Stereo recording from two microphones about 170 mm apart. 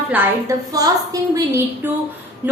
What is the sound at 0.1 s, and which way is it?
A woman's voice, 20° right (ahead or behind).